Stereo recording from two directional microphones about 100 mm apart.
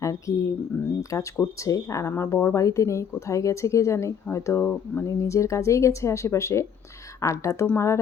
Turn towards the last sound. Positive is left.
turn(degrees=30)  # may be behind; listen again after turning